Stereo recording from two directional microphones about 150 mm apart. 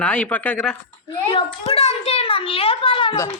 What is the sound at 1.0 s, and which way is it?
A child's voice, 35° left (ahead or behind).